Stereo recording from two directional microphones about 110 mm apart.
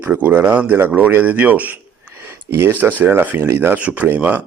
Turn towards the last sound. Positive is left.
turn(degrees=-15)  # may be behind; listen again after turning